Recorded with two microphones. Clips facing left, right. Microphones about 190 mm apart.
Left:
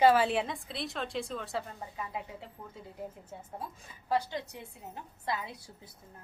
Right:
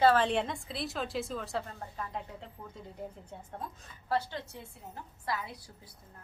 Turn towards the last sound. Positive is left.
turn(degrees=20)  # may be behind; listen again after turning